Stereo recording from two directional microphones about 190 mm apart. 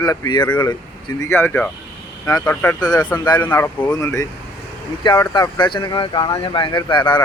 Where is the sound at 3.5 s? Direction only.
10° left (ahead or behind); by 7.2 s 25° left (ahead or behind).